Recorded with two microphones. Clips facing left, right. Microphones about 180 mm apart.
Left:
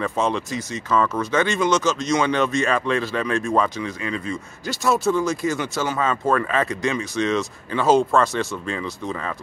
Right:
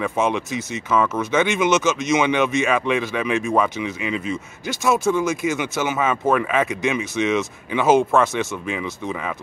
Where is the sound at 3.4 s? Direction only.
5° right (ahead or behind).